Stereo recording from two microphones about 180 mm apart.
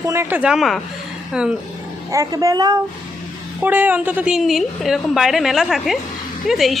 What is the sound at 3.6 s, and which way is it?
A woman's voice, 10° right (ahead or behind).